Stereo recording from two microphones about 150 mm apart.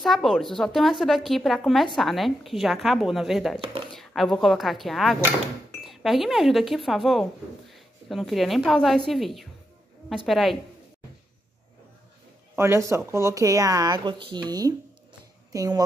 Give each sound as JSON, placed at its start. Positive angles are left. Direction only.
{"t": 0.0, "sound": "a woman's voice", "side_deg": 0}
{"t": 12.5, "sound": "speech", "side_deg": -15}